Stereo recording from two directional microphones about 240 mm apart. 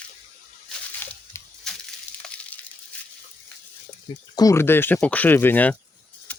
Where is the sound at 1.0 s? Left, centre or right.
Centre.